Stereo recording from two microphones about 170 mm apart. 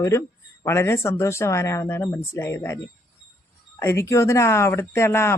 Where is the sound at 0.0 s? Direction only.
15° left (ahead or behind).